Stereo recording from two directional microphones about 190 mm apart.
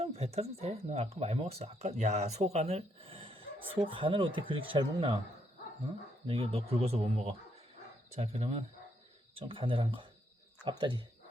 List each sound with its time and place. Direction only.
0.0 s speech: 35° right (ahead or behind)
6.2 s speech: 30° right (ahead or behind)